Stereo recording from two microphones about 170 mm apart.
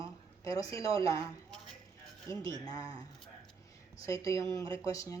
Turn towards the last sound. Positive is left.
turn(degrees=20)  # may be behind; listen again after turning